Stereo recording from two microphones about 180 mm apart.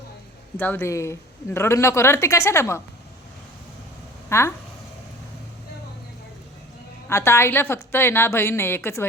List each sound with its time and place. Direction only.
0.5 s speech: 10° left (ahead or behind)
4.3 s speech: 15° left (ahead or behind)
7.1 s speech: 15° left (ahead or behind)